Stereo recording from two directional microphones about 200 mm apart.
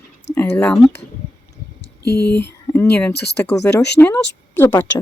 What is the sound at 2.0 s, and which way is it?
Speech, 55° left (ahead or behind).